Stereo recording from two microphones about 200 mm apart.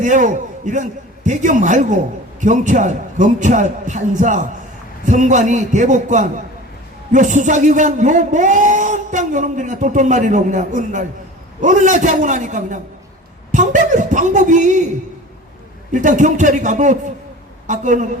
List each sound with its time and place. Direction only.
0.0 s a man's voice: 40° right (ahead or behind)
15.9 s a man's voice: 40° right (ahead or behind)